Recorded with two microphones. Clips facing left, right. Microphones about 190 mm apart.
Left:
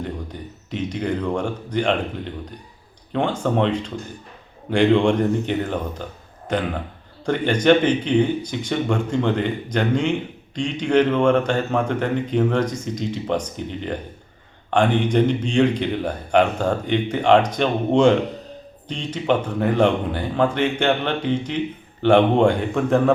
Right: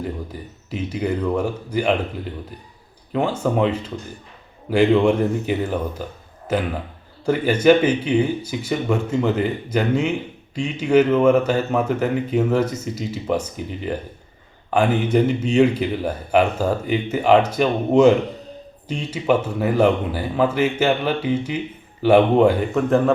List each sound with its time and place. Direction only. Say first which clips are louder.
0.0 s a man's voice: right 1 dB; 5° right (ahead or behind)